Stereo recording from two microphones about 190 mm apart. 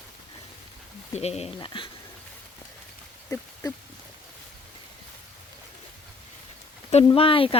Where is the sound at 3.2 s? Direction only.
15° left (ahead or behind).